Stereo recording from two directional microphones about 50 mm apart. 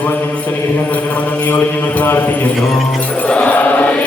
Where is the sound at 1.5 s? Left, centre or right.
Left.